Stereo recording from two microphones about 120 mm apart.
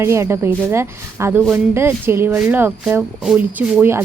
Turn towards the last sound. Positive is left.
turn(degrees=-15)  # may be behind; listen again after turning